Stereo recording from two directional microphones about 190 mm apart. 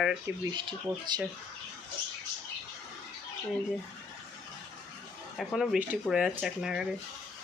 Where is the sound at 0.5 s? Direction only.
25° right (ahead or behind).